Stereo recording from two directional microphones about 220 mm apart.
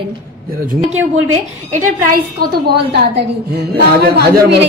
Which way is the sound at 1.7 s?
40° right (ahead or behind).